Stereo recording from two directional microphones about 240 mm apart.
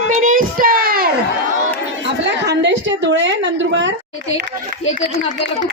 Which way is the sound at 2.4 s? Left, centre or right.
Right.